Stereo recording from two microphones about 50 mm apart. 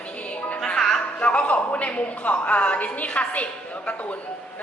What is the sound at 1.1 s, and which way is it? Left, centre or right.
Music, left.